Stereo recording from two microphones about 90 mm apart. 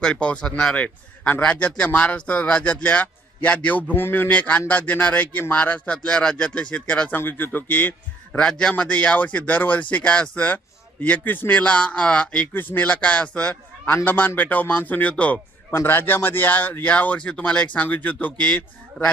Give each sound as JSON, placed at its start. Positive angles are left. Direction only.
{"t": 0.0, "sound": "a man's voice", "side_deg": 10}